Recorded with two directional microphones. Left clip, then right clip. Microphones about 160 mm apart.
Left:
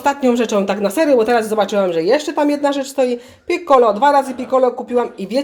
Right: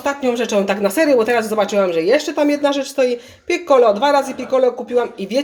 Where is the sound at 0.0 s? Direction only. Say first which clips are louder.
Left 3 dB; 40° left (ahead or behind).